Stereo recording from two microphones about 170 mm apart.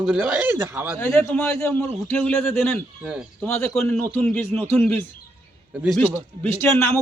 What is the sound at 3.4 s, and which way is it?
A man's voice, 15° left (ahead or behind).